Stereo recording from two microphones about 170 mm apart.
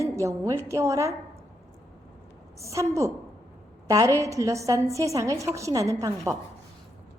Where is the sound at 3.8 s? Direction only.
20° right (ahead or behind).